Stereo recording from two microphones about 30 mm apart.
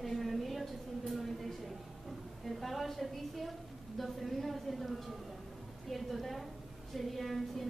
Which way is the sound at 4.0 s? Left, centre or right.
Centre.